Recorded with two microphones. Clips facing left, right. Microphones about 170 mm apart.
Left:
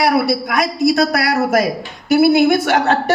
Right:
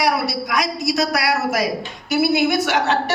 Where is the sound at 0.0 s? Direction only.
55° left (ahead or behind).